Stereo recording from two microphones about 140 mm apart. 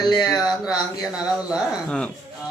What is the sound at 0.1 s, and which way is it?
Speech, 30° left (ahead or behind).